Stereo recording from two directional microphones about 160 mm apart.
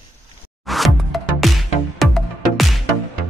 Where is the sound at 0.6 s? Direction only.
Centre (ahead or behind).